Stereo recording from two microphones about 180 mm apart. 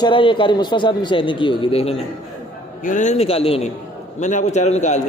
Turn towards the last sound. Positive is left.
turn(degrees=40)  # may be behind; listen again after turning